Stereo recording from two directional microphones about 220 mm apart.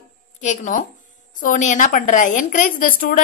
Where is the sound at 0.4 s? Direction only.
35° left (ahead or behind).